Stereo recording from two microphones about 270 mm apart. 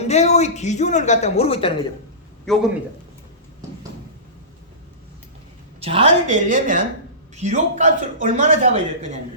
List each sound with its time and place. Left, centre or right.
0.0 s a man's voice: left
2.5 s a man's voice: centre
5.8 s a man's voice: right